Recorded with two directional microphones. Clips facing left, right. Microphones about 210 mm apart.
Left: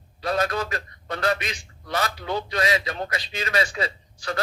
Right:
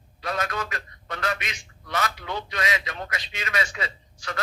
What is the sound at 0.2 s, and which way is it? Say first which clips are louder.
A man's voice: left 5 dB; 35° left (ahead or behind).